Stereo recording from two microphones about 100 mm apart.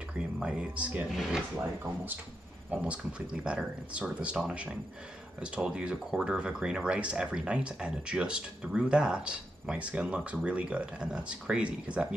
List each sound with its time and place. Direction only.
0.4 s speech: 10° right (ahead or behind)
2.7 s speech: 10° right (ahead or behind)